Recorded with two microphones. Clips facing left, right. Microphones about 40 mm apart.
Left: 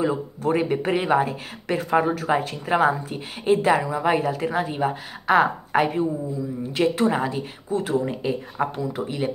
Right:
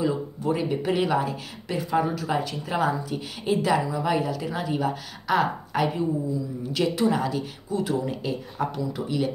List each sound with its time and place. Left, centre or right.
0.5 s a woman's voice: left